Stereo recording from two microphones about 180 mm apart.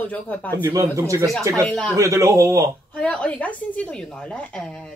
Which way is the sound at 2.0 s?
15° right (ahead or behind).